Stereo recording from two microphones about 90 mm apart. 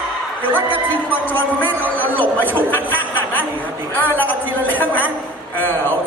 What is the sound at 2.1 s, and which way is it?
Chatter, 20° right (ahead or behind).